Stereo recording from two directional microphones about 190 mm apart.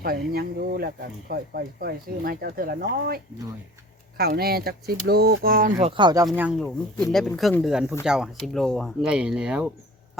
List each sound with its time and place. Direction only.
0.3 s speech: 55° right (ahead or behind)
4.2 s speech: 55° right (ahead or behind)
5.8 s speech: 25° right (ahead or behind)
6.2 s speech: 5° right (ahead or behind)